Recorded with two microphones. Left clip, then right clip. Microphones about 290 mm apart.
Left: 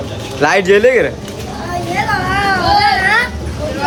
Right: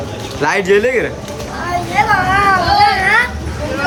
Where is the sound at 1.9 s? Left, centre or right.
Centre.